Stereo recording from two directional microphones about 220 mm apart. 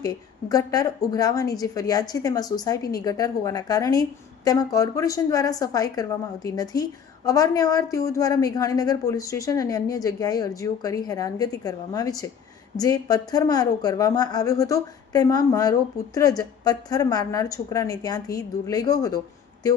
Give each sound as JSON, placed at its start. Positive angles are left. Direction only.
{"t": 0.0, "sound": "speech", "side_deg": 15}